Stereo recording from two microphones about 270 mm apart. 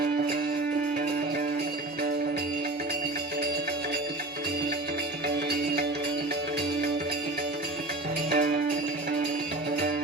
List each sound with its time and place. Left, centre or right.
8.3 s music: right